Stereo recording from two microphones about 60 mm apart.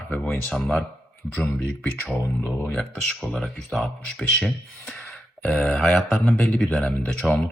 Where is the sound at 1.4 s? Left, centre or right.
Centre.